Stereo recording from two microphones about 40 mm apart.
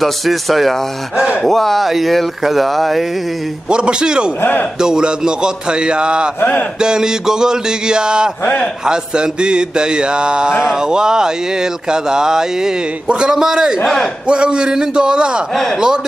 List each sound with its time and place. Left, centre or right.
0.0 s speech: centre
3.7 s mantra: right
10.6 s speech: centre
13.1 s mantra: right
13.4 s speech: centre
14.2 s mantra: right